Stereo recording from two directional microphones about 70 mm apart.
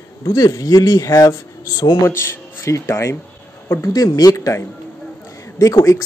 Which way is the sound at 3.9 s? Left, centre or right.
Left.